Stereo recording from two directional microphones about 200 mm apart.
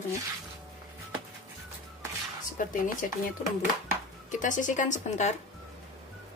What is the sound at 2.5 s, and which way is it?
Speech, 40° left (ahead or behind).